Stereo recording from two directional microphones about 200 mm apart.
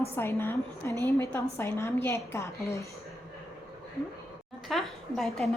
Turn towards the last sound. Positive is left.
turn(degrees=0)  # may be behind; listen again after turning